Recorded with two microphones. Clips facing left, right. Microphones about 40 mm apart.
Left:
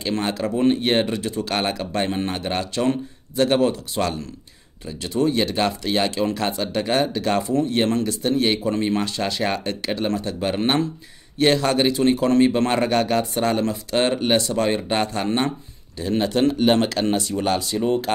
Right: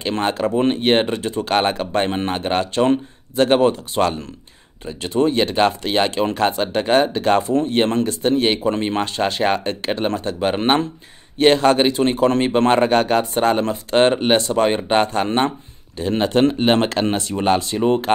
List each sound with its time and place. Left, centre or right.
0.0 s speech: right